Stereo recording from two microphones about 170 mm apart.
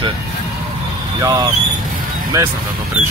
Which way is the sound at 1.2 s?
20° right (ahead or behind).